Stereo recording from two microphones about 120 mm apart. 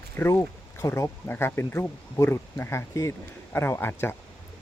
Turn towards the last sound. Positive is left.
turn(degrees=20)  # may be behind; listen again after turning